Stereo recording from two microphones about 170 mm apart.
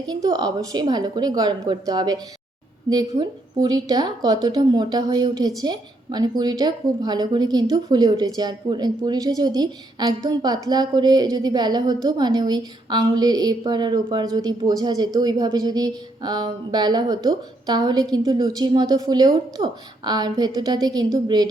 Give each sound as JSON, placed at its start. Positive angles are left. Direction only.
{"t": 0.1, "sound": "a woman's voice", "side_deg": -25}